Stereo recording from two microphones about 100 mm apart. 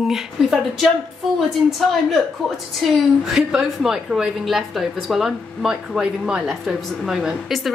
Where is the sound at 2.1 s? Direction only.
Centre (ahead or behind).